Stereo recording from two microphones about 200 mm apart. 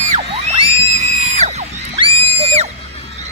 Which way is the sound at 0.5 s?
35° right (ahead or behind).